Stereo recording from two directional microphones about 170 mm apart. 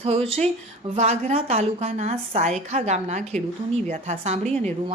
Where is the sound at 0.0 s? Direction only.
35° right (ahead or behind).